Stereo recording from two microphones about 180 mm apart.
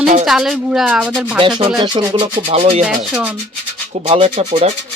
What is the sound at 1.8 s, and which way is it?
Speech, 25° right (ahead or behind).